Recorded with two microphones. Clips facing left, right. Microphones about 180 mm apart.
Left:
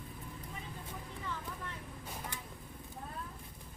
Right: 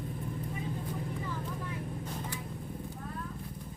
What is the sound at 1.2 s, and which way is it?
Vehicle, 10° right (ahead or behind).